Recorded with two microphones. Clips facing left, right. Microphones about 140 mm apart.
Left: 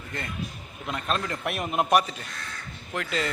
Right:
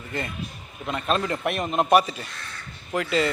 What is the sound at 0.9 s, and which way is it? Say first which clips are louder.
A man's voice: right 4 dB; 5° right (ahead or behind).